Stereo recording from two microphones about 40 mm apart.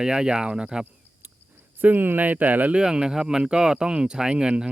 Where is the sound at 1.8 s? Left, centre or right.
Right.